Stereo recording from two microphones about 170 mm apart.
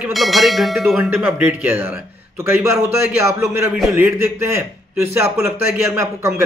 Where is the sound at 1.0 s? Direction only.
10° right (ahead or behind).